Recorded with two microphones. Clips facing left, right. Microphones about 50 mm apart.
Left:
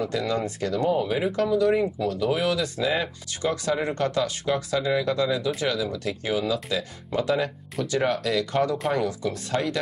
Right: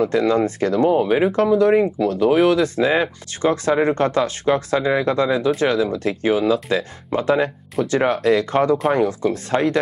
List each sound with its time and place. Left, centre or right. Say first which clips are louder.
0.0 s speech: right 9 dB; right